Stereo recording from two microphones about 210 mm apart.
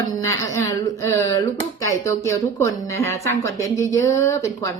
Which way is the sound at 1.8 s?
15° left (ahead or behind).